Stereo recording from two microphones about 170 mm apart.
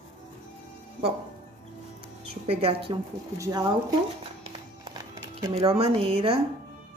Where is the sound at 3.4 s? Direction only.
20° right (ahead or behind).